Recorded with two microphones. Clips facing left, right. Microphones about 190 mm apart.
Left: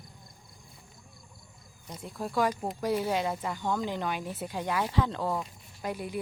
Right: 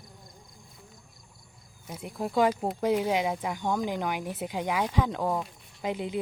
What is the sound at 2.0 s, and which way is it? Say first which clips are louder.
Speech: right 4 dB; 15° right (ahead or behind).